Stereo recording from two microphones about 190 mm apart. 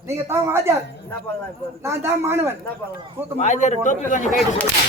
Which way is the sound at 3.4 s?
40° left (ahead or behind).